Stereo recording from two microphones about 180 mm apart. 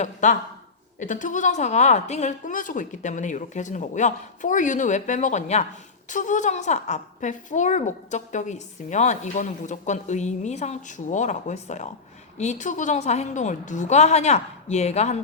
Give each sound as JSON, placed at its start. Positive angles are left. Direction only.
{"t": 0.0, "sound": "a woman's voice", "side_deg": 45}